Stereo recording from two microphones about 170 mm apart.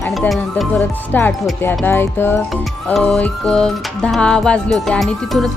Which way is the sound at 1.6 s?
10° left (ahead or behind).